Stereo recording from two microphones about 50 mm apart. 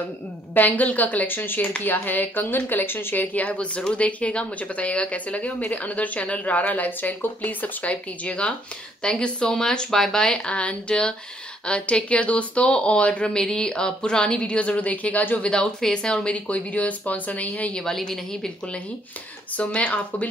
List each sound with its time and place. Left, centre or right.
0.6 s speech: left
3.3 s speech: left
17.7 s speech: centre
19.6 s speech: left